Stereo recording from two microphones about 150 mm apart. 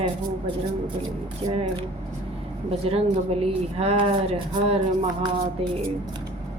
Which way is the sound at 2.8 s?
40° right (ahead or behind).